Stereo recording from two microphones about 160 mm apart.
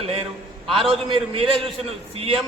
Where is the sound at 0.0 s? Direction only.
35° right (ahead or behind).